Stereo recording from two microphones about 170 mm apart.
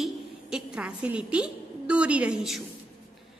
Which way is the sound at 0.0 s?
5° right (ahead or behind).